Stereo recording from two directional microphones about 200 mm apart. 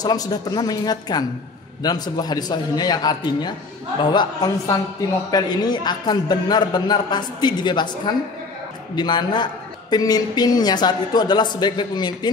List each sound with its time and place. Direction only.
0.0 s a woman's voice: 20° left (ahead or behind)